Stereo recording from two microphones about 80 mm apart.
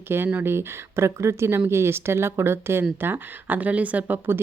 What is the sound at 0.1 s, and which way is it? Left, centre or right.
Speech, right.